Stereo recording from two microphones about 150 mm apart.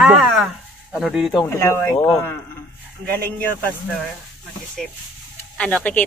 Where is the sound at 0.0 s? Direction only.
Centre (ahead or behind).